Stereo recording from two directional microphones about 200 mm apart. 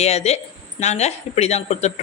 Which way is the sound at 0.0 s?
30° left (ahead or behind).